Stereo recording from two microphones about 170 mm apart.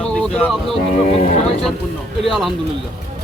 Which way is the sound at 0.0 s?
5° left (ahead or behind).